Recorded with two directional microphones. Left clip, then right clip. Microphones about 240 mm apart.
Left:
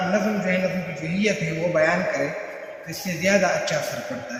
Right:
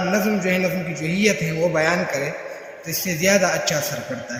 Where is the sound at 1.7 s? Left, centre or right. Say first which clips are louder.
Left 3 dB; right.